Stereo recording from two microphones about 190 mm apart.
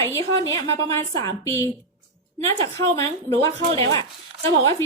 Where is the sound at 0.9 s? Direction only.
15° left (ahead or behind).